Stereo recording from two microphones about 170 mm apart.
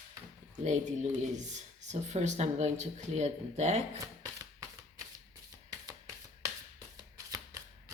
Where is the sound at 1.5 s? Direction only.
45° right (ahead or behind).